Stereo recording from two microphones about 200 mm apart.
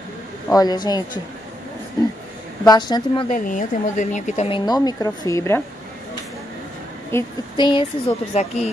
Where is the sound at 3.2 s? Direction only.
40° left (ahead or behind); by 5.6 s 15° left (ahead or behind).